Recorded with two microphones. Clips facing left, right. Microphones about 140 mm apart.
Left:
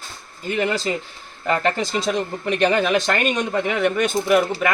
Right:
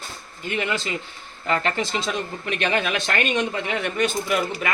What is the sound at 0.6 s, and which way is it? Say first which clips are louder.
A man's voice: left 4 dB; 40° left (ahead or behind).